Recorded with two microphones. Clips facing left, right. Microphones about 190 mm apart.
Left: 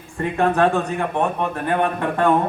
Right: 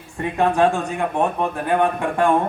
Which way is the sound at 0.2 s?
15° right (ahead or behind).